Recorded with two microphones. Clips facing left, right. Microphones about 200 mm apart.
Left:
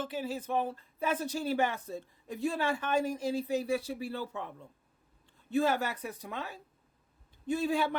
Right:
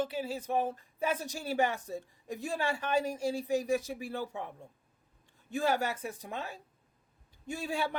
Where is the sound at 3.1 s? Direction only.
15° right (ahead or behind).